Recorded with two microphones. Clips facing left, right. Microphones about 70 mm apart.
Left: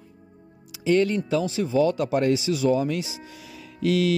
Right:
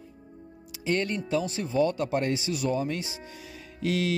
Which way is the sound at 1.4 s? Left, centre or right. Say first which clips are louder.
Left 3 dB; left.